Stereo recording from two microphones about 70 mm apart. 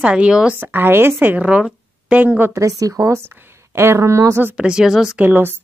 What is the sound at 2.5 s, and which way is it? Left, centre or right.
Speech, right.